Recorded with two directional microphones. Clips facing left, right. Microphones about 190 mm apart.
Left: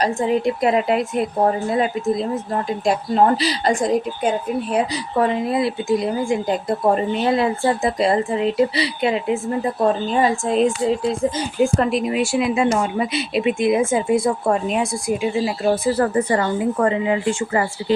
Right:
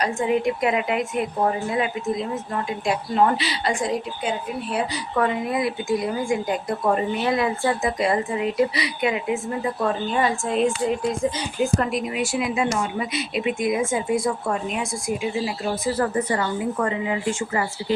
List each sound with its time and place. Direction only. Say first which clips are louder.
0.0 s a woman's voice: left 3 dB; 35° left (ahead or behind)
5.1 s a woman's voice: left 4 dB; 30° left (ahead or behind)
11.6 s a woman's voice: left 4 dB; 25° left (ahead or behind)
16.0 s a woman's voice: left 4 dB; 50° left (ahead or behind)